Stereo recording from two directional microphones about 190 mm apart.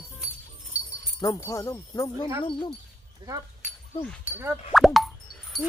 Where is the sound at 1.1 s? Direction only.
20° left (ahead or behind).